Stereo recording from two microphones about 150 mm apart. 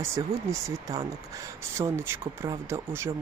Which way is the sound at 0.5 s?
20° right (ahead or behind).